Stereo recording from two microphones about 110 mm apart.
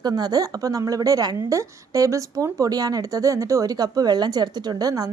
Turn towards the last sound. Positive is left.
turn(degrees=-35)  # may be behind; listen again after turning